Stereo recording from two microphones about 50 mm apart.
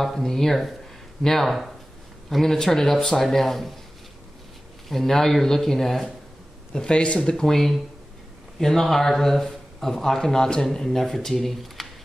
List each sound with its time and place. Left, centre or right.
0.0 s speech: centre
4.8 s speech: centre
6.7 s speech: centre